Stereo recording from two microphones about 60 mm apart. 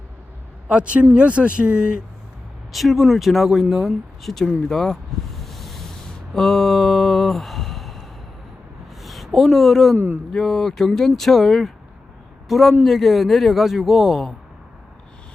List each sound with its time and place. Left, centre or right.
0.7 s speech: centre
2.7 s a sound: centre
10.3 s speech: centre